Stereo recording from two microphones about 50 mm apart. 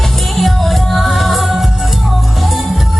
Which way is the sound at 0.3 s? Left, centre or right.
Centre.